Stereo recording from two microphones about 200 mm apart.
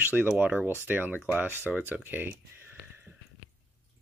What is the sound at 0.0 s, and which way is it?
Speech, 10° right (ahead or behind).